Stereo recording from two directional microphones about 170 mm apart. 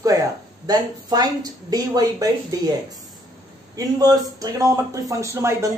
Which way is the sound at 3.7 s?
20° right (ahead or behind).